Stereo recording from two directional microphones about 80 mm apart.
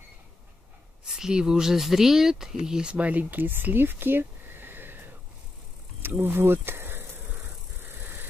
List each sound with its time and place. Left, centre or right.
1.1 s speech: centre; by 7.0 s right